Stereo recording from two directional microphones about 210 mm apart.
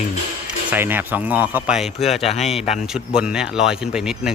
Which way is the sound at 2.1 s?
30° left (ahead or behind).